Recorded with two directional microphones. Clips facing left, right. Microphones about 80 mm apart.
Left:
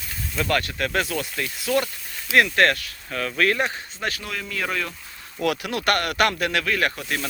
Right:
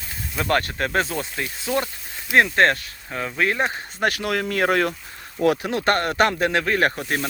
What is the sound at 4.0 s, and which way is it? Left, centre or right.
Speech, right.